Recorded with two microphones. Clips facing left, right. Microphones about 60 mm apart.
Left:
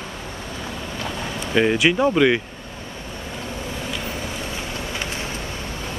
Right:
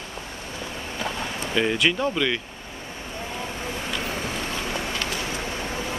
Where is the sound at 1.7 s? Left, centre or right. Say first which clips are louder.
Left 6 dB; centre.